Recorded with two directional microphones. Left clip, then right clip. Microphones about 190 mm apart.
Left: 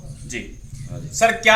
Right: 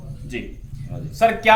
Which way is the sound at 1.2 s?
15° left (ahead or behind).